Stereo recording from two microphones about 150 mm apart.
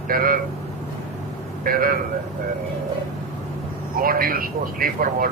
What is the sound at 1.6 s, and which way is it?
Speech, 70° right (ahead or behind).